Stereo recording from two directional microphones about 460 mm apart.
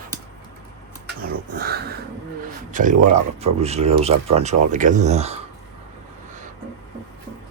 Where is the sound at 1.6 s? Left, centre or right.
Centre.